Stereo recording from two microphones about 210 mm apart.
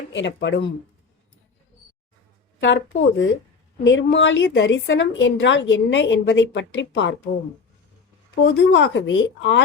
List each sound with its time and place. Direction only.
0.1 s a woman's voice: 55° left (ahead or behind)
2.6 s a woman's voice: 60° left (ahead or behind)
8.5 s a woman's voice: 60° left (ahead or behind)